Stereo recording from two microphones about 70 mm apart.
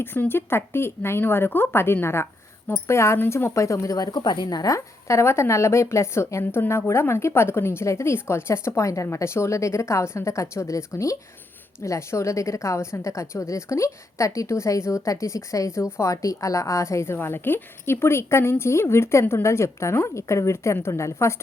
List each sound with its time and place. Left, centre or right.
0.0 s a woman's voice: left